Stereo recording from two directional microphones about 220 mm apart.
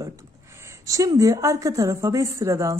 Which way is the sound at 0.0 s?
15° right (ahead or behind).